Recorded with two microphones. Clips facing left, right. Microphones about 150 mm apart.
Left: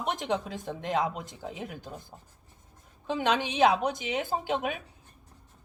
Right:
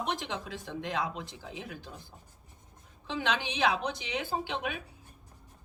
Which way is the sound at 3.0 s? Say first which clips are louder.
Left 5 dB; 45° left (ahead or behind).